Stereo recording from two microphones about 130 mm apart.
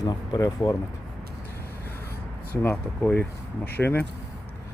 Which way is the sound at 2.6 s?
15° left (ahead or behind).